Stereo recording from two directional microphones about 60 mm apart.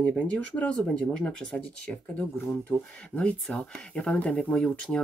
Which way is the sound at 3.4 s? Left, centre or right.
Centre.